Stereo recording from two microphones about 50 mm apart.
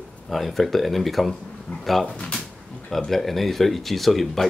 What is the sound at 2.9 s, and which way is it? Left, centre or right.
Speech, centre.